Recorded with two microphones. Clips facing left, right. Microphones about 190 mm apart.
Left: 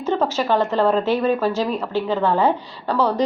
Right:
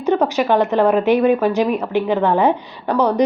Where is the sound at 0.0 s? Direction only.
15° right (ahead or behind).